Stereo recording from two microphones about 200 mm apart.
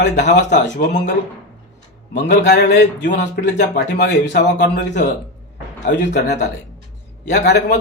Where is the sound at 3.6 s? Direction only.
60° left (ahead or behind).